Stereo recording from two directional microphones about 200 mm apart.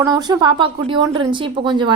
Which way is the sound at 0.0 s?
20° right (ahead or behind).